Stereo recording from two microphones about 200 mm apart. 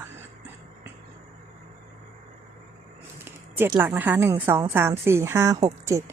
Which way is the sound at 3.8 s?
10° right (ahead or behind).